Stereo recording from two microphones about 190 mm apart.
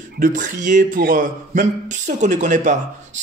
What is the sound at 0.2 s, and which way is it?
Speech, 40° right (ahead or behind).